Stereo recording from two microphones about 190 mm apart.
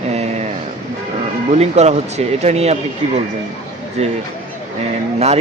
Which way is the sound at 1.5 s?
35° right (ahead or behind).